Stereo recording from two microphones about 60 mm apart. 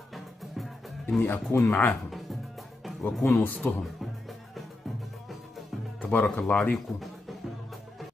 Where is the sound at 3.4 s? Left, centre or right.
Left.